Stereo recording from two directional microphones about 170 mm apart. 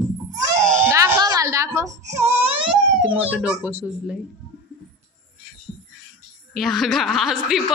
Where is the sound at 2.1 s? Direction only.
15° right (ahead or behind).